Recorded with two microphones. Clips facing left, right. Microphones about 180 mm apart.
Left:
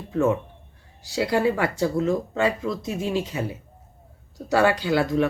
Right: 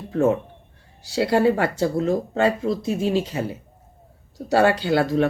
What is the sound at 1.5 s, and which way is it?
Speech, 35° right (ahead or behind).